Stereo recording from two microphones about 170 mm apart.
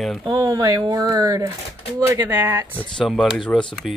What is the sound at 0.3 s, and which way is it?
Speech, 20° right (ahead or behind).